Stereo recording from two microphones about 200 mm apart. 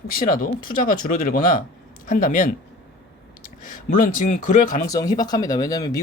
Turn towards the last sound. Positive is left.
turn(degrees=20)  # may be behind; listen again after turning